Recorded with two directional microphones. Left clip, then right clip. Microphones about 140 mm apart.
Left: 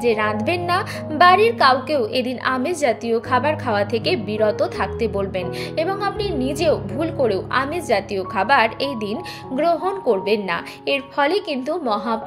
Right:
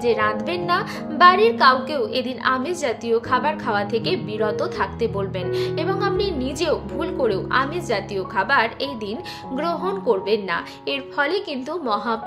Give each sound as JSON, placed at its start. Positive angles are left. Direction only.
{"t": 0.0, "sound": "a woman's voice", "side_deg": 20}
{"t": 9.6, "sound": "a woman's voice", "side_deg": 15}